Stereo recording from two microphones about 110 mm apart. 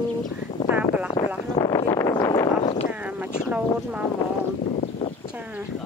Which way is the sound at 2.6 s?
55° left (ahead or behind).